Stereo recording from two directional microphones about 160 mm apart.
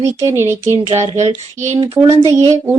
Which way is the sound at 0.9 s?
45° right (ahead or behind).